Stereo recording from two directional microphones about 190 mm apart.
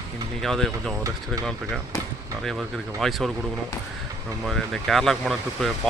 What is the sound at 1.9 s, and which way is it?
Speech, 15° left (ahead or behind).